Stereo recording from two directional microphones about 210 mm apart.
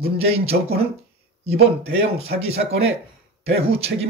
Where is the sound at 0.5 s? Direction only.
45° right (ahead or behind).